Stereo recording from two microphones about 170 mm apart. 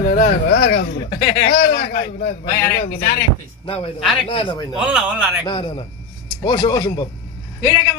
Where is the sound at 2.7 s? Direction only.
65° left (ahead or behind).